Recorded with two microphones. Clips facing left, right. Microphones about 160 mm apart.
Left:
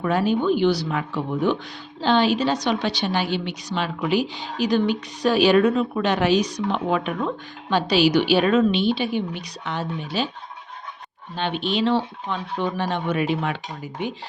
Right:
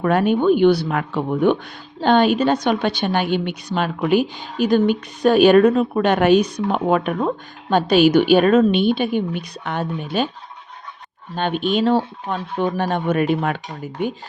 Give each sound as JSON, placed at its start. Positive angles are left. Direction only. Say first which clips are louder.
{"t": 0.0, "sound": "a woman's voice", "louder": "right 4 dB", "side_deg": -55}
{"t": 11.3, "sound": "a woman's voice", "louder": "right 4 dB", "side_deg": -50}